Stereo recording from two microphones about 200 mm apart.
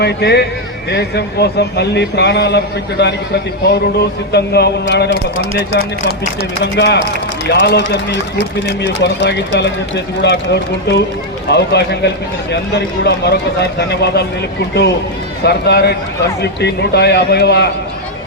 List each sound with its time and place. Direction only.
0.0 s speech: 55° left (ahead or behind)
15.4 s speech: 55° left (ahead or behind)